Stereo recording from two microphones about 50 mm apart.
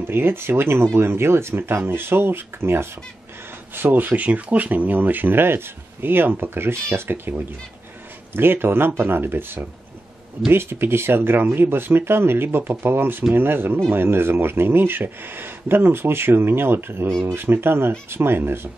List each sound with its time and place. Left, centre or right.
0.0 s speech: right
3.7 s speech: right